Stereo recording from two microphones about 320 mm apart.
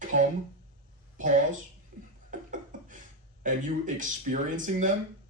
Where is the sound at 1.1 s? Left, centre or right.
Right.